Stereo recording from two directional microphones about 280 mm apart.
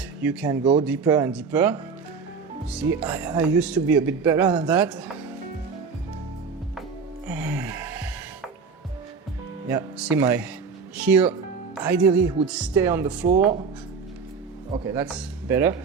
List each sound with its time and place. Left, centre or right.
0.2 s speech: centre
0.6 s speech: centre
7.3 s music: centre
9.6 s speech: centre
13.2 s speech: right
14.8 s speech: centre